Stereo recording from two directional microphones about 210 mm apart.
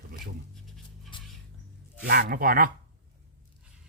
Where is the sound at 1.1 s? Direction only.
25° left (ahead or behind).